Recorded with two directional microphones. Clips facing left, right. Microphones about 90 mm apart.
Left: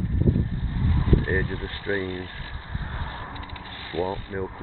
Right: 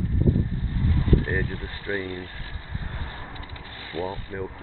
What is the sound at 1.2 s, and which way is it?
Speech, centre (ahead or behind).